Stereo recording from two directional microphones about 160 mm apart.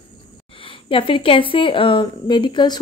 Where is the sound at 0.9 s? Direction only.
30° left (ahead or behind).